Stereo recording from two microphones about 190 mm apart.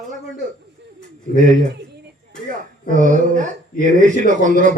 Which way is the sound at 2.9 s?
40° right (ahead or behind).